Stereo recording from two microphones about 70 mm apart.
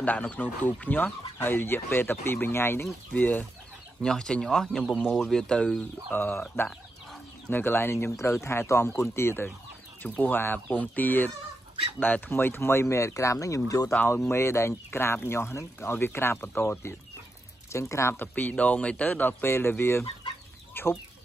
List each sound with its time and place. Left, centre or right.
0.0 s speech: left
3.1 s speech: left
4.0 s speech: centre
6.0 s speech: left
7.4 s speech: left
10.0 s speech: left
14.1 s speech: left
18.1 s speech: left
19.4 s speech: left